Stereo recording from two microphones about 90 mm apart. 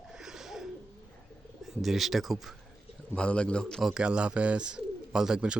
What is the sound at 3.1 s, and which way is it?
Speech, 10° left (ahead or behind).